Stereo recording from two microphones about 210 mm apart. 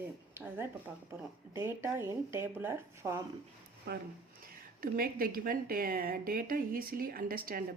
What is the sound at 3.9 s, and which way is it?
A woman's voice, 55° right (ahead or behind).